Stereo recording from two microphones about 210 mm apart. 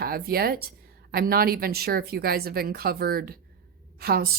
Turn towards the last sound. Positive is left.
turn(degrees=-45)  # may be behind; listen again after turning